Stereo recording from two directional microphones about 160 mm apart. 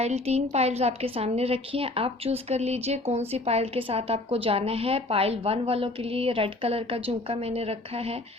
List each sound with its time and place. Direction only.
0.0 s a woman's voice: 40° right (ahead or behind)